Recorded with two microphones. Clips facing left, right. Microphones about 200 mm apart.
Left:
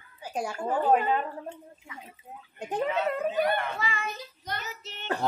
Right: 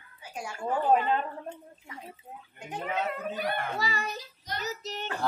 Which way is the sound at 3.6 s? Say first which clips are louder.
Even; 40° right (ahead or behind).